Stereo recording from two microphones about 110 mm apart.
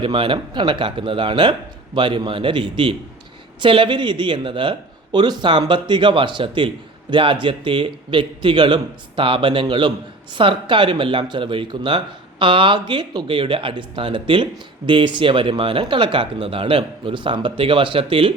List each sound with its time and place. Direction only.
0.0 s speech: 50° right (ahead or behind)